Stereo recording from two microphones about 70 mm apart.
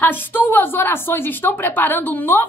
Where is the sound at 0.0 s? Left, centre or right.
Left.